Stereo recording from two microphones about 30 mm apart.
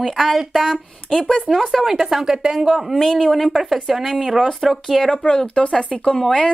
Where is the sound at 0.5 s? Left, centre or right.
Centre.